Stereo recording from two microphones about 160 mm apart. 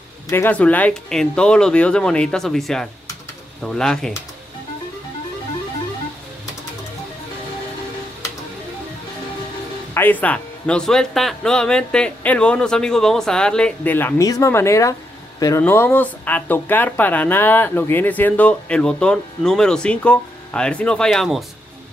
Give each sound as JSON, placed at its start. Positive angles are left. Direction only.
{"t": 0.3, "sound": "speech", "side_deg": 10}
{"t": 9.9, "sound": "speech", "side_deg": 10}